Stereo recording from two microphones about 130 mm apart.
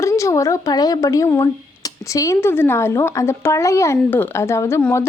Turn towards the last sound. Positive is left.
turn(degrees=20)  # may be behind; listen again after turning